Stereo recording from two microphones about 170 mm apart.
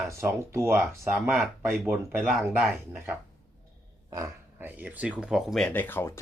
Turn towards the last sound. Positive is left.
turn(degrees=15)  # may be behind; listen again after turning